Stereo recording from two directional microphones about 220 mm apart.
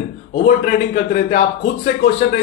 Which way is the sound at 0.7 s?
40° left (ahead or behind).